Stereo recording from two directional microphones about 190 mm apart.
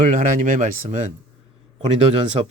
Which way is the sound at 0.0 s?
40° right (ahead or behind).